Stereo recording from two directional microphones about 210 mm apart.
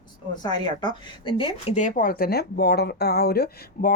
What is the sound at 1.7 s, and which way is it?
A woman's voice, 40° left (ahead or behind).